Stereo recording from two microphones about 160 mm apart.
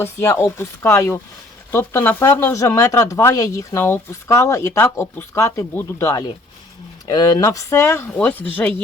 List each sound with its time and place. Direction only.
0.0 s speech: 15° left (ahead or behind)